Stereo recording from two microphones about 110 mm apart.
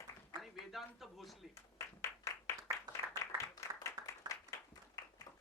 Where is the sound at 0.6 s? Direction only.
Centre (ahead or behind).